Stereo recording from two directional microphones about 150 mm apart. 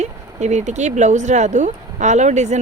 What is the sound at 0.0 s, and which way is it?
Speech, 50° right (ahead or behind).